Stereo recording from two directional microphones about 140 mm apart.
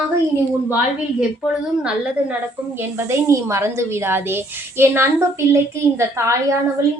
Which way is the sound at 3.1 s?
20° right (ahead or behind).